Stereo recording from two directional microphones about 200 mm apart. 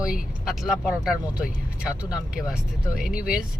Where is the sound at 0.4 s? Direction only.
Centre (ahead or behind).